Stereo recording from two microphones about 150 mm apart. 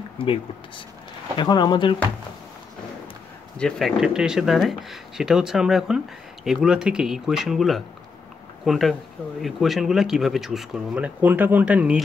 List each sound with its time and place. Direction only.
0.2 s speech: 35° left (ahead or behind)
3.5 s speech: 5° left (ahead or behind)